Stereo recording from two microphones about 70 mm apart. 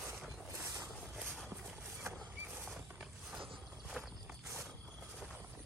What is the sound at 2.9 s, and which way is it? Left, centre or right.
Mechanisms, centre.